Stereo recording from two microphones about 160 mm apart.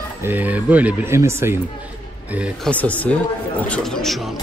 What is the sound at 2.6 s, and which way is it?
A man's voice, 10° left (ahead or behind).